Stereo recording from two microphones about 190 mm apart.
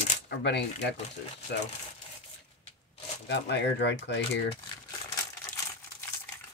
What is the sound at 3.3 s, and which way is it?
Speech, 65° left (ahead or behind).